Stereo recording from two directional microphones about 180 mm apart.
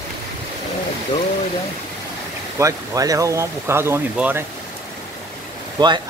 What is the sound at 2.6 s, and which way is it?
Speech, 20° right (ahead or behind).